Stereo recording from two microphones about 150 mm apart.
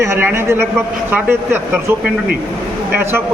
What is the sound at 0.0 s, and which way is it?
Speech, 15° right (ahead or behind).